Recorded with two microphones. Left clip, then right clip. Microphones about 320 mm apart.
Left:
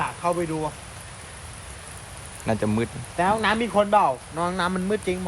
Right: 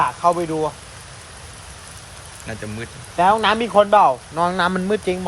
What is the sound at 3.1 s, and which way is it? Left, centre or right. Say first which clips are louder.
Speech: right 6 dB; right.